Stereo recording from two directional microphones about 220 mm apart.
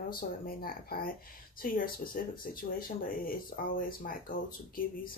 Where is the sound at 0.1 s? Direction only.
40° left (ahead or behind).